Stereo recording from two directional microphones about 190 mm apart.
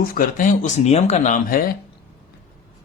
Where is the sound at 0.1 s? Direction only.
45° left (ahead or behind).